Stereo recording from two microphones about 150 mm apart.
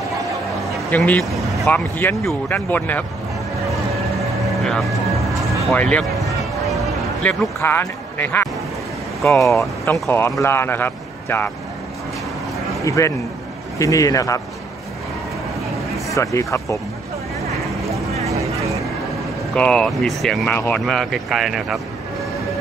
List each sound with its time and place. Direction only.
0.9 s speech: 10° left (ahead or behind)
5.7 s speech: 5° left (ahead or behind)
7.2 s speech: 15° left (ahead or behind)
9.2 s speech: centre (ahead or behind)
10.0 s a man's voice: 15° left (ahead or behind)
12.8 s speech: 20° left (ahead or behind)
16.1 s speech: 20° left (ahead or behind)
18.1 s vehicle: 45° right (ahead or behind)
19.5 s speech: 5° left (ahead or behind)